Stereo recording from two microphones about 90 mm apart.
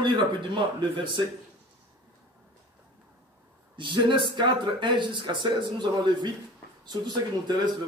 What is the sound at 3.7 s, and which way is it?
Speech, 65° right (ahead or behind).